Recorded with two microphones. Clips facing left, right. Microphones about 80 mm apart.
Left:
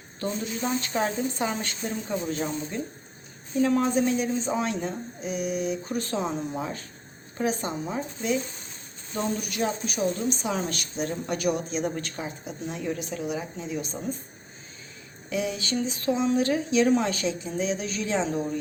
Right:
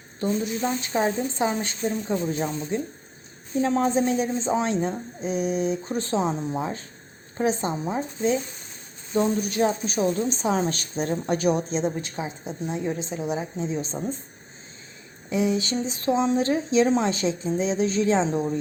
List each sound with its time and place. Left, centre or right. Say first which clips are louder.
0.8 s speech: right 2 dB; right
9.4 s a woman's voice: right 5 dB; right
11.9 s speech: right 2 dB; centre
15.3 s speech: right 5 dB; right